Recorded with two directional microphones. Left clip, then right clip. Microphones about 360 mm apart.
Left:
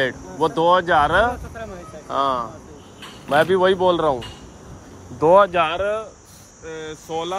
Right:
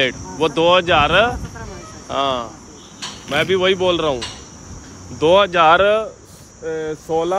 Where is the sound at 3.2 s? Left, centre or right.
Centre.